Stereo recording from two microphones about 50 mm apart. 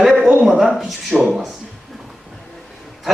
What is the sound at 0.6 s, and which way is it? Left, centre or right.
Speech, centre.